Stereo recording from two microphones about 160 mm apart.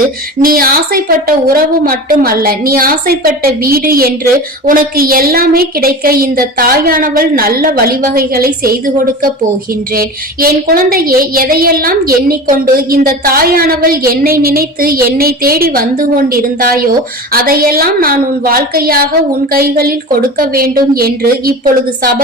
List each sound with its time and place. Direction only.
0.4 s a woman's voice: 65° right (ahead or behind)
9.9 s a woman's voice: 70° right (ahead or behind)